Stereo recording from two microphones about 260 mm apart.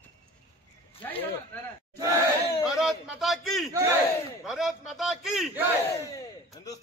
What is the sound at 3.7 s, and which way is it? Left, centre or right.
Battle cry, centre.